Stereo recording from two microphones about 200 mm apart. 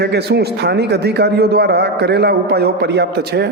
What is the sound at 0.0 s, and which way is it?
A man's voice, 55° right (ahead or behind).